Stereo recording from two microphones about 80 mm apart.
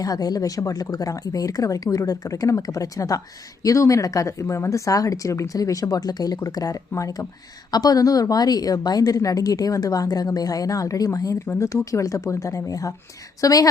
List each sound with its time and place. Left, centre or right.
0.0 s a woman's voice: left